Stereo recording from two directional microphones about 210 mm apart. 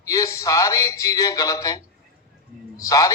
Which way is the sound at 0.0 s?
15° left (ahead or behind).